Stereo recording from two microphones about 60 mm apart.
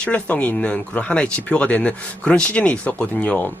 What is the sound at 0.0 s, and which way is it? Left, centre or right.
Speech, left.